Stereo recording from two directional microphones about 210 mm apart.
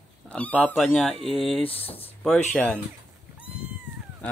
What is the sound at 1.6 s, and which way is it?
Speech, 25° left (ahead or behind).